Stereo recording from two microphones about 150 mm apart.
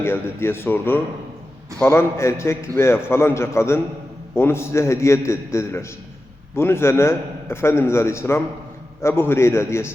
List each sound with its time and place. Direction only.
0.0 s a man's voice: 15° left (ahead or behind)